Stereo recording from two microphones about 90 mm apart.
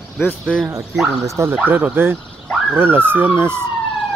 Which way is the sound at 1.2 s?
35° right (ahead or behind).